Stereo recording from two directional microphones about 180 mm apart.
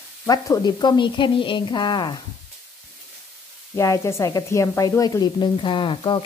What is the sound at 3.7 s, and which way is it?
Speech, 15° left (ahead or behind).